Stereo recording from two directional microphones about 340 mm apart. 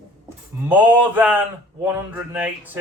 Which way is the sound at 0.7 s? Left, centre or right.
Centre.